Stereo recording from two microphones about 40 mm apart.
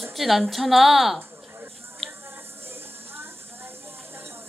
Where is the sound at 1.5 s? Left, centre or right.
Right.